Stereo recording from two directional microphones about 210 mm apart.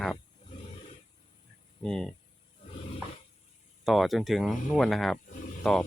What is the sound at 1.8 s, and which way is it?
Speech, 5° left (ahead or behind).